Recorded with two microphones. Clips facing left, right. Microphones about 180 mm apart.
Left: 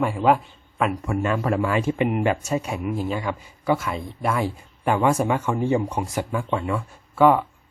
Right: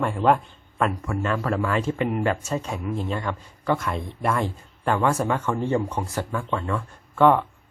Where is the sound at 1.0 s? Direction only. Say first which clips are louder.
Left 3 dB; 20° left (ahead or behind).